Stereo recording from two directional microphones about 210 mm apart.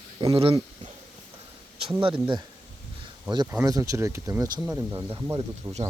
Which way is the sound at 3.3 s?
20° right (ahead or behind).